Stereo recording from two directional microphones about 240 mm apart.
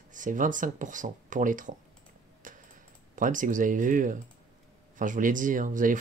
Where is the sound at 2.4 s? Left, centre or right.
Right.